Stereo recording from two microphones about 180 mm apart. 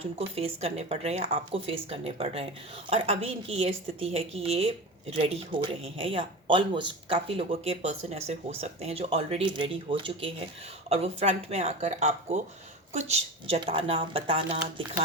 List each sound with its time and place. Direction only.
0.0 s a woman's voice: 35° right (ahead or behind)